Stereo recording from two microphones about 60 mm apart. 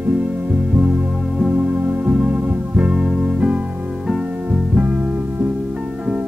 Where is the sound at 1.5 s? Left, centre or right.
Right.